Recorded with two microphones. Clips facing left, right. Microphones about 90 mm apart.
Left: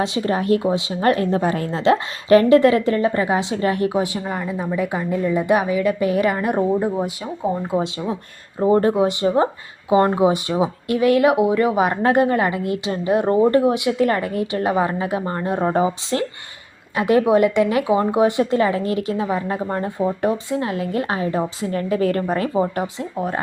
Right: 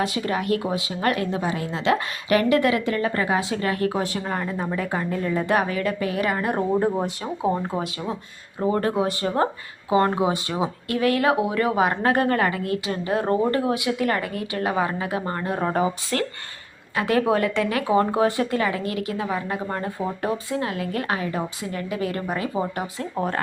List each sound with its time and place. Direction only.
0.0 s speech: 30° left (ahead or behind)
3.9 s a woman's voice: 10° left (ahead or behind)
6.0 s speech: 25° left (ahead or behind)
7.8 s a woman's voice: 15° left (ahead or behind)